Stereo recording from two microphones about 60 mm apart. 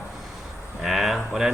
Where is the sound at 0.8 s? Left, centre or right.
Centre.